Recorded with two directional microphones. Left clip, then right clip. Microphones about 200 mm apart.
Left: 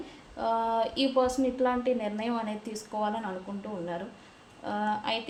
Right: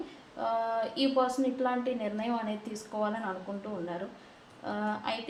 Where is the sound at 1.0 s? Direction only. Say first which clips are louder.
Right 1 dB; 35° left (ahead or behind).